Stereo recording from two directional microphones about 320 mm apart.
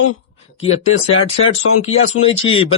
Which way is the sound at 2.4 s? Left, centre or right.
Centre.